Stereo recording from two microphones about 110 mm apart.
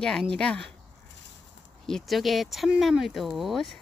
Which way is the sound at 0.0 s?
10° left (ahead or behind).